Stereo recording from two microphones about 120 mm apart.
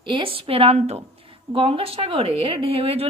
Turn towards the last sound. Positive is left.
turn(degrees=-55)  # may be behind; listen again after turning